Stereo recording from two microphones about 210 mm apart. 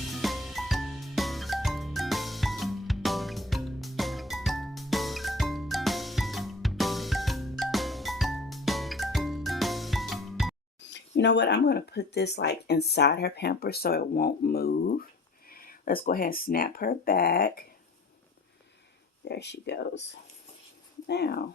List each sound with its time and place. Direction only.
0.1 s music: centre (ahead or behind)
10.8 s speech: 60° left (ahead or behind)
19.2 s speech: 55° left (ahead or behind)
21.1 s speech: 50° left (ahead or behind)